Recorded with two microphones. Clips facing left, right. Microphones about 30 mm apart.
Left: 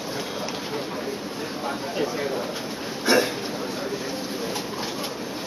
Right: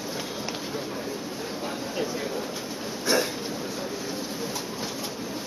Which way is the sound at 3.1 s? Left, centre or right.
Left.